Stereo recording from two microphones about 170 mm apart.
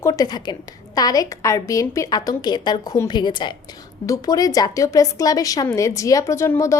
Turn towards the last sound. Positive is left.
turn(degrees=15)  # may be behind; listen again after turning